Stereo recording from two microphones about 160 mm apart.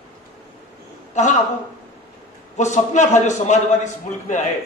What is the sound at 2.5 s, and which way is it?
A man's voice, 50° left (ahead or behind).